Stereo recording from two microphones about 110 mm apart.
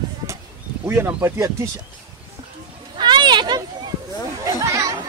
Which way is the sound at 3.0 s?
40° right (ahead or behind).